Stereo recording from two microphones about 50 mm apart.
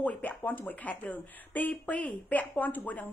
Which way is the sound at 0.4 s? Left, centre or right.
Left.